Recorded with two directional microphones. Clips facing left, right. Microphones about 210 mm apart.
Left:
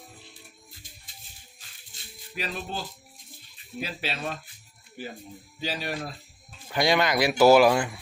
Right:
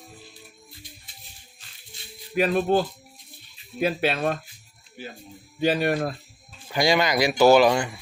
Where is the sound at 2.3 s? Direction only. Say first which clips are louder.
Right 13 dB; 55° right (ahead or behind).